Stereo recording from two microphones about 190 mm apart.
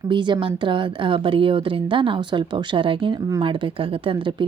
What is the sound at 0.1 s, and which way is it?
A woman's voice, 25° right (ahead or behind).